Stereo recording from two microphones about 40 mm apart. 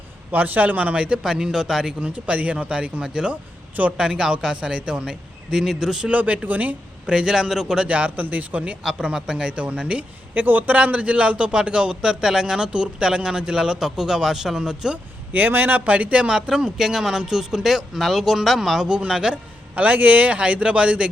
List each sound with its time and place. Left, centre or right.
0.3 s a man's voice: right
0.9 s a man's voice: right
1.2 s speech: centre
2.0 s a man's voice: right; by 6.1 s centre
6.1 s a man's voice: right
7.1 s speech: centre
7.9 s a man's voice: right
9.1 s a man's voice: centre
10.3 s a man's voice: right; by 14.9 s centre
15.3 s a man's voice: right
16.5 s speech: centre
18.9 s a man's voice: right
19.3 s a man's voice: right